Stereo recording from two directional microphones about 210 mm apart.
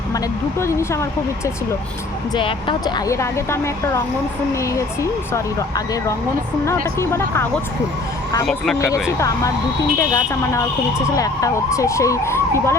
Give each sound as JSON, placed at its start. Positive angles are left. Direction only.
{"t": 0.6, "sound": "speech", "side_deg": 15}
{"t": 2.3, "sound": "speech", "side_deg": 20}
{"t": 8.4, "sound": "speech", "side_deg": 0}
{"t": 9.1, "sound": "speech", "side_deg": 15}